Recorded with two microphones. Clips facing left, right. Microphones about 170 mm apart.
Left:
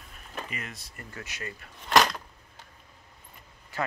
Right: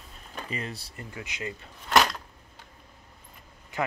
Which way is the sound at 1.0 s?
15° right (ahead or behind).